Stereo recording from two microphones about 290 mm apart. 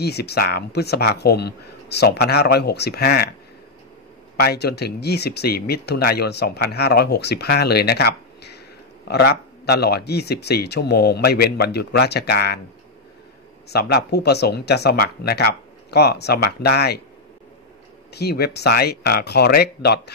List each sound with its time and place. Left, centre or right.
0.0 s speech: left
4.4 s speech: left
13.7 s speech: left
18.1 s speech: left